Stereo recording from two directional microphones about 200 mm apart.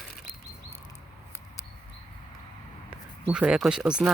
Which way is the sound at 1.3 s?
15° left (ahead or behind).